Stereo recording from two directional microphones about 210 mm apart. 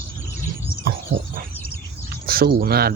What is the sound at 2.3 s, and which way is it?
Speech, 45° right (ahead or behind).